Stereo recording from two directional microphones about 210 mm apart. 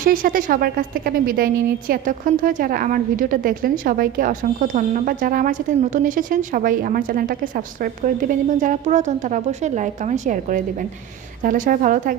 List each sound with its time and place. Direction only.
0.0 s a woman's voice: 40° right (ahead or behind)